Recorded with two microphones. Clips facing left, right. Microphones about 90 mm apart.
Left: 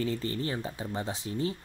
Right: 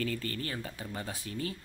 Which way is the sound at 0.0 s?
25° left (ahead or behind).